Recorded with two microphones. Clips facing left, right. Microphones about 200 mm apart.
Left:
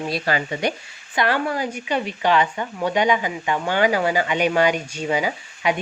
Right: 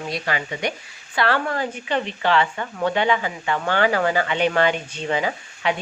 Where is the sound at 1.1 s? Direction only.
15° left (ahead or behind).